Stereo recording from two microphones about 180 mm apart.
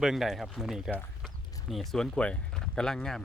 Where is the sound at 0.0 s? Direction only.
Centre (ahead or behind).